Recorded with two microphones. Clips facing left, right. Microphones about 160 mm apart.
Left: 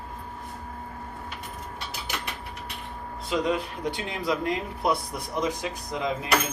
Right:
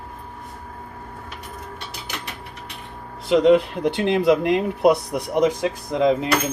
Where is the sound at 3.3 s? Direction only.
75° right (ahead or behind).